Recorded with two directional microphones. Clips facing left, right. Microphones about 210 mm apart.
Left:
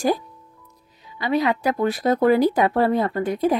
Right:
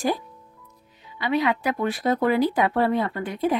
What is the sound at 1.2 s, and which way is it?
Speech, 40° left (ahead or behind).